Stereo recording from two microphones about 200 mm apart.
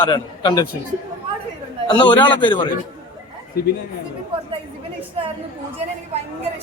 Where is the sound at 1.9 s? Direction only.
25° left (ahead or behind).